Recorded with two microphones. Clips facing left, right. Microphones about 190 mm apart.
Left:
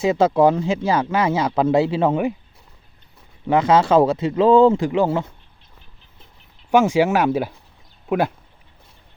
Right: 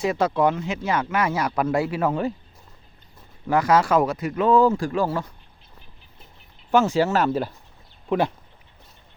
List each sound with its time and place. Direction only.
0.0 s speech: 25° left (ahead or behind)
3.4 s speech: 20° left (ahead or behind)
6.7 s speech: 15° left (ahead or behind)